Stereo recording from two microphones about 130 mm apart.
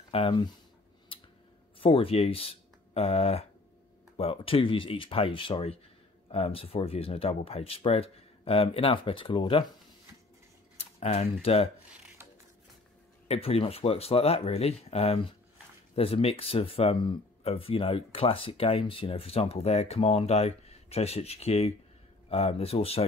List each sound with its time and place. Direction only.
0.1 s speech: 40° left (ahead or behind)
1.8 s speech: 45° left (ahead or behind)
10.8 s speech: 55° left (ahead or behind)
13.3 s speech: 50° left (ahead or behind)